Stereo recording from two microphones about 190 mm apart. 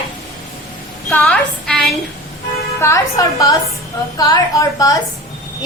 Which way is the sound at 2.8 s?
15° left (ahead or behind).